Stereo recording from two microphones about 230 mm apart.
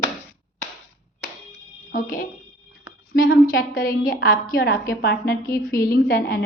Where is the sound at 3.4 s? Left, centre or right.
Left.